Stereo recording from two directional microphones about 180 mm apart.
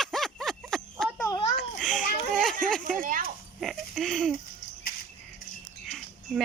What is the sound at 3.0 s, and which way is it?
Speech, 50° right (ahead or behind).